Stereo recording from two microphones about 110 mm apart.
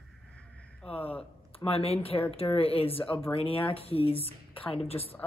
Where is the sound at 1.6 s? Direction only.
60° left (ahead or behind).